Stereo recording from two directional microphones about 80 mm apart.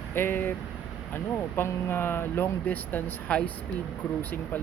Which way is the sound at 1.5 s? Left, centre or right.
Left.